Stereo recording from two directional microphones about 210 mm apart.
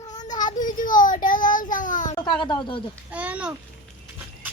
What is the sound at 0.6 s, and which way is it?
Child singing, 40° left (ahead or behind).